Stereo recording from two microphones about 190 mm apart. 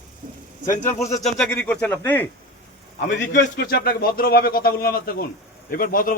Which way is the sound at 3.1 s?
65° left (ahead or behind).